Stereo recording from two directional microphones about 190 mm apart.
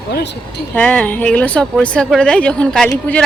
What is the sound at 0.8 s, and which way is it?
Speech, 5° left (ahead or behind).